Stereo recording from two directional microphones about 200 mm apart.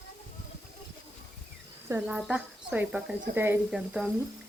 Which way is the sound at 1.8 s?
10° right (ahead or behind).